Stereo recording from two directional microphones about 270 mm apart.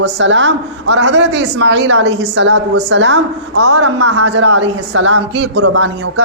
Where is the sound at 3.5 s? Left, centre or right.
Right.